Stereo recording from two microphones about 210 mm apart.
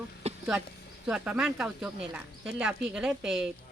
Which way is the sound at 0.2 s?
30° right (ahead or behind).